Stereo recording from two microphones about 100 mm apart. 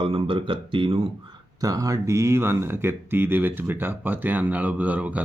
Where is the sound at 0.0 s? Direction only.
65° right (ahead or behind).